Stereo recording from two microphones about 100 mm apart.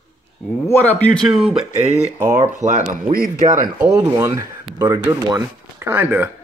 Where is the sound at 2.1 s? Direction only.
30° right (ahead or behind).